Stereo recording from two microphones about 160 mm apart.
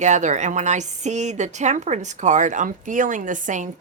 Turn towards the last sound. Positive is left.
turn(degrees=-50)  # may be behind; listen again after turning